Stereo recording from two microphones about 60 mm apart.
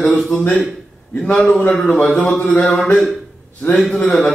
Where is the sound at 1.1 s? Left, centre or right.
Centre.